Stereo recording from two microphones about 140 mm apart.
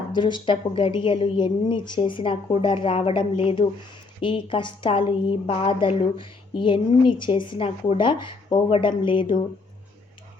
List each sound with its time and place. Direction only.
0.1 s a woman's voice: 35° left (ahead or behind)